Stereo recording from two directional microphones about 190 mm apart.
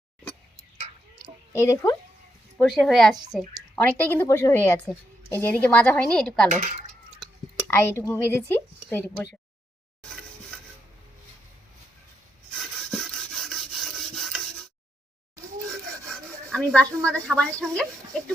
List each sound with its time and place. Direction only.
1.5 s speech: 15° left (ahead or behind)
2.6 s speech: 5° left (ahead or behind)
4.1 s speech: 15° left (ahead or behind)
6.5 s speech: 40° right (ahead or behind)
7.7 s speech: 15° left (ahead or behind)
12.5 s rub: centre (ahead or behind)
16.5 s speech: 5° left (ahead or behind)